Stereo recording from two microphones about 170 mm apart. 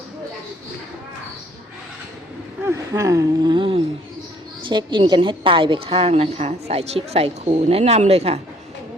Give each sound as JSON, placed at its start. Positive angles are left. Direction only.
{"t": 2.6, "sound": "a woman's voice", "side_deg": -15}